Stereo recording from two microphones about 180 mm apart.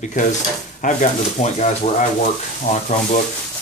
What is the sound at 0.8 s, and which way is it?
Speech, 40° left (ahead or behind).